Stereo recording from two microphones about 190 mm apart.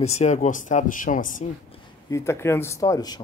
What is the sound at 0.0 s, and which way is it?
Speech, 35° left (ahead or behind).